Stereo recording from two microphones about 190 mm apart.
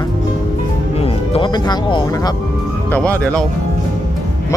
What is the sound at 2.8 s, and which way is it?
Speech, 10° left (ahead or behind).